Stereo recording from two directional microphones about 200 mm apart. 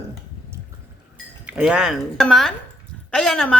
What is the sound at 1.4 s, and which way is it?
A woman's voice, 5° right (ahead or behind).